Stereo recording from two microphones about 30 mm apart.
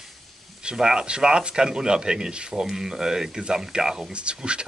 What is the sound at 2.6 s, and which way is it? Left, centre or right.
Speech, centre.